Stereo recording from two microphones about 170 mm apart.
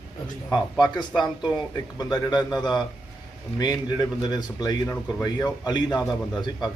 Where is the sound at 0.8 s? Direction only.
25° left (ahead or behind).